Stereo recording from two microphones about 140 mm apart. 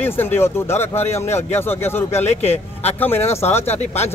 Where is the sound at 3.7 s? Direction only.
50° left (ahead or behind).